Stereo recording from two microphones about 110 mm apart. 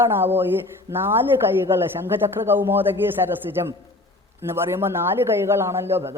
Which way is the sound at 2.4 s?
20° right (ahead or behind).